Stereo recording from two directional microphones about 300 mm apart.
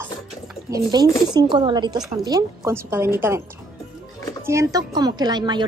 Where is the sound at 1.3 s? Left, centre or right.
Centre.